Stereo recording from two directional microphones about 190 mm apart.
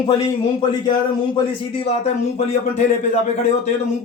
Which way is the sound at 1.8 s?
35° left (ahead or behind).